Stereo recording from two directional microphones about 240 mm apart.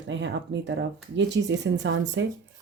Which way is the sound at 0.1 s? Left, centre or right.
Right.